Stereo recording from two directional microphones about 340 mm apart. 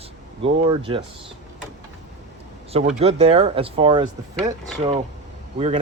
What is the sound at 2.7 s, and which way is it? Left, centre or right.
Speech, centre.